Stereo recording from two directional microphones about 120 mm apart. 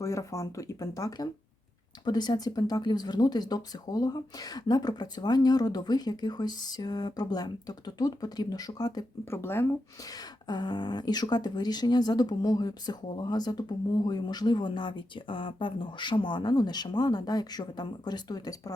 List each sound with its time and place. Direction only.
0.0 s speech: 25° left (ahead or behind)
9.3 s speech: 20° left (ahead or behind)
10.1 s speech: 35° left (ahead or behind)